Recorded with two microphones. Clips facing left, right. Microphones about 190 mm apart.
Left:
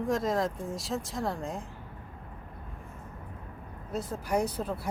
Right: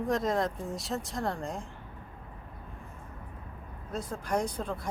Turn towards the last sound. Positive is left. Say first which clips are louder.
# left 2 dB
turn(degrees=5)  # may be behind; listen again after turning